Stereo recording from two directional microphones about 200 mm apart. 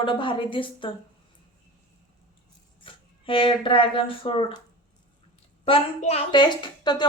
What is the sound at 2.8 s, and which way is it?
Speech, 25° left (ahead or behind).